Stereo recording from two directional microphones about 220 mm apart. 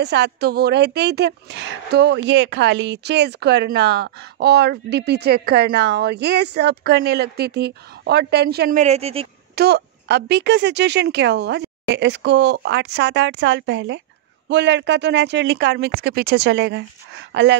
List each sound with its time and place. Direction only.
0.0 s speech: 50° right (ahead or behind); by 9.3 s 25° right (ahead or behind)
9.6 s speech: 50° right (ahead or behind)